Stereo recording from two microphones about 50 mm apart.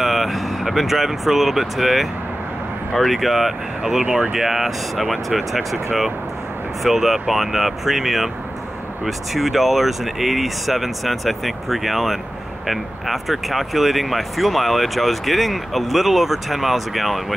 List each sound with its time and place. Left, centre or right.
0.0 s speech: centre
4.0 s speech: right
4.3 s speech: centre